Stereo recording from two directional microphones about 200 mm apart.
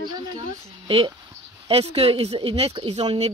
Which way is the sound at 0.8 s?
25° right (ahead or behind).